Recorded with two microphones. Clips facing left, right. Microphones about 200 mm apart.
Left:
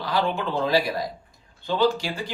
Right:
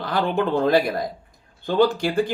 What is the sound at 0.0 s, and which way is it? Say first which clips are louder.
Speech: right 3 dB; 55° right (ahead or behind).